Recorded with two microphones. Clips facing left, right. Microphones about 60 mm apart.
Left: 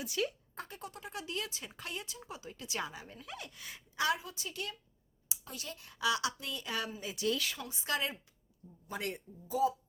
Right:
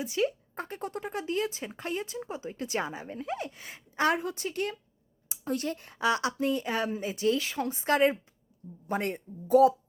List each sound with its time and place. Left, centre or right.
0.0 s speech: right
7.6 s a woman's voice: right
9.5 s speech: right